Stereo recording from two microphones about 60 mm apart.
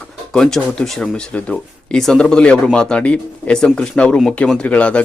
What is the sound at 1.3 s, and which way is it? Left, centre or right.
Speech, centre.